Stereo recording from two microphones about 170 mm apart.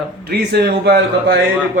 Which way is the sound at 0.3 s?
70° right (ahead or behind).